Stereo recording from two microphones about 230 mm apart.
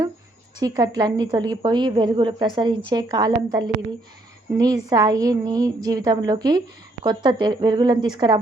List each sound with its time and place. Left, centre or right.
0.6 s a woman's voice: centre